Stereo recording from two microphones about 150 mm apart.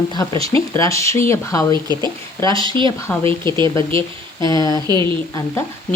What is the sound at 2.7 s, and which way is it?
A woman's voice, 30° right (ahead or behind).